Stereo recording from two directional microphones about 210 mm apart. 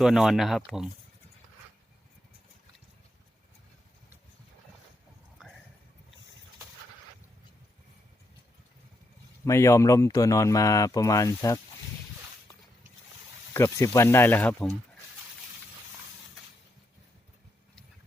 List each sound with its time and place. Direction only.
0.0 s speech: centre (ahead or behind)
9.4 s speech: 15° left (ahead or behind)
13.5 s speech: 15° left (ahead or behind)